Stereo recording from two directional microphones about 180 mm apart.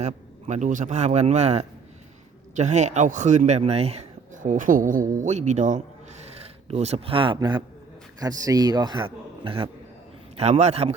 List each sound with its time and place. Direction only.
0.0 s a man's voice: 40° right (ahead or behind)